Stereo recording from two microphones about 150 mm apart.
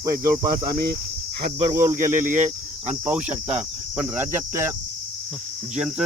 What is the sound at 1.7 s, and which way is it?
Cricket, 20° right (ahead or behind).